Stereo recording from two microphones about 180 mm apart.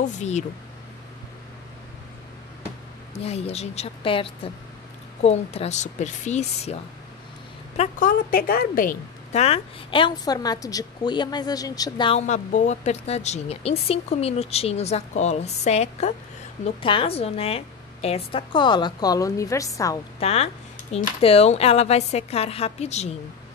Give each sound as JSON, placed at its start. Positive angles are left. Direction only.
{"t": 0.0, "sound": "speech", "side_deg": 40}
{"t": 3.2, "sound": "a woman's voice", "side_deg": 35}
{"t": 9.4, "sound": "a woman's voice", "side_deg": 30}
{"t": 12.2, "sound": "a woman's voice", "side_deg": 40}
{"t": 20.2, "sound": "speech", "side_deg": 35}